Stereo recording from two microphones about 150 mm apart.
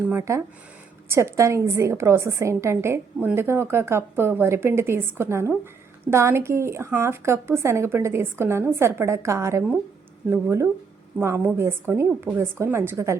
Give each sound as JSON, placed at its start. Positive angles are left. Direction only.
{"t": 0.1, "sound": "a woman's voice", "side_deg": -20}